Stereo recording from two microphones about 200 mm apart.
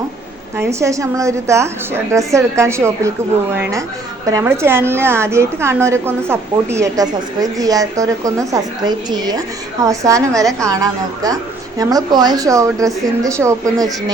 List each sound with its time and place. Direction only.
0.5 s a woman's voice: 15° right (ahead or behind)